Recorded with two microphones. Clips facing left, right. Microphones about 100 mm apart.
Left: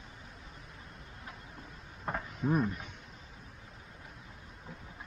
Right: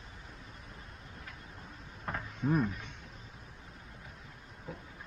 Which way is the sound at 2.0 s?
10° left (ahead or behind).